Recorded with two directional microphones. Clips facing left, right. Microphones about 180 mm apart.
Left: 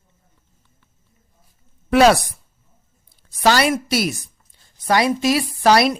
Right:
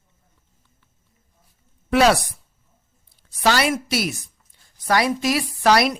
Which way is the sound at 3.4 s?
40° left (ahead or behind).